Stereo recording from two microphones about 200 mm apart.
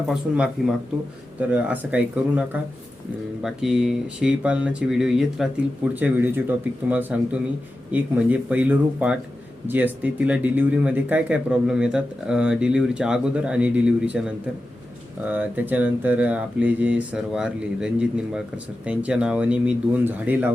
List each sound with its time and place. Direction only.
0.1 s speech: 5° right (ahead or behind)
15.3 s speech: 10° right (ahead or behind)